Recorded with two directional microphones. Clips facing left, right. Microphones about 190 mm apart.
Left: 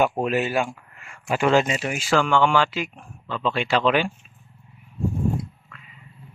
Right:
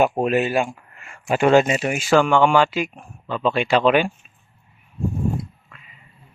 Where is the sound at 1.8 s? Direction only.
20° right (ahead or behind).